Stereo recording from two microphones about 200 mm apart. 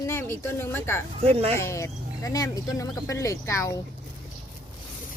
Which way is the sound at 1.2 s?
30° right (ahead or behind).